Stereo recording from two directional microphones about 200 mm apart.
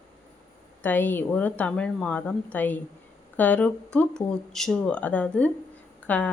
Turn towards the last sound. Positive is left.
turn(degrees=5)  # may be behind; listen again after turning